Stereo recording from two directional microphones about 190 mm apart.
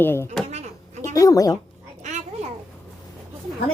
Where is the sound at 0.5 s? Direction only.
35° right (ahead or behind).